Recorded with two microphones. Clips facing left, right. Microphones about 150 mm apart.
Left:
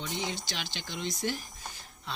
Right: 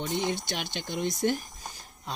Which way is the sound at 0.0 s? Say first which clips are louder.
Right 6 dB; 55° right (ahead or behind).